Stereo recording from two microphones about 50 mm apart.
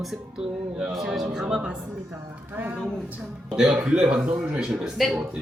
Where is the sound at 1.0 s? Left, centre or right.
Centre.